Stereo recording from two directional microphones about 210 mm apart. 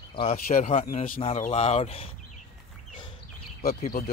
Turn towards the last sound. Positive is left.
turn(degrees=40)  # may be behind; listen again after turning